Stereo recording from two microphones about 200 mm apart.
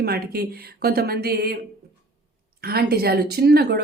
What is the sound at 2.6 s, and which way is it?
Speech, 50° right (ahead or behind).